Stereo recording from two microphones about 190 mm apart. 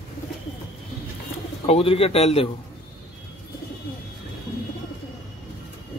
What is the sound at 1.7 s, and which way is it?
Speech, 30° left (ahead or behind).